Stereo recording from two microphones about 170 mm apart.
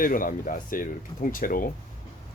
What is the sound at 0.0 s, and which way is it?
Speech, 55° left (ahead or behind).